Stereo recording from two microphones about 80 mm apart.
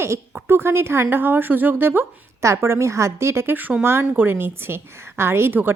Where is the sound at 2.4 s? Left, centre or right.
Right.